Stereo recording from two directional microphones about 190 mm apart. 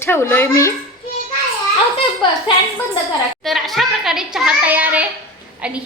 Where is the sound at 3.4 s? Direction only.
Centre (ahead or behind).